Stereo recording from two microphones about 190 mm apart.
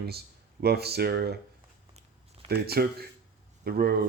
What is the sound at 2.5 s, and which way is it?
Speech, 55° right (ahead or behind).